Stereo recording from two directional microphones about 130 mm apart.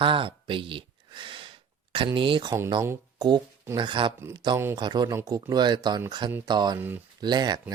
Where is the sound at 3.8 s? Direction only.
35° right (ahead or behind).